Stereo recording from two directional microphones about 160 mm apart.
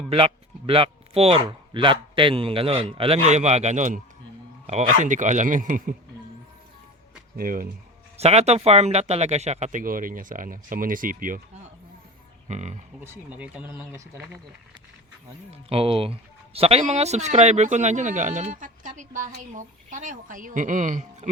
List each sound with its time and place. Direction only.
0.1 s speech: 35° right (ahead or behind); by 5.9 s 55° right (ahead or behind)
7.3 s speech: 60° right (ahead or behind)
8.2 s speech: 40° right (ahead or behind); by 11.6 s 60° right (ahead or behind)
12.5 s speech: 45° right (ahead or behind)
13.1 s speech: 10° right (ahead or behind)
15.4 s speech: 35° right (ahead or behind); by 21.2 s 50° right (ahead or behind)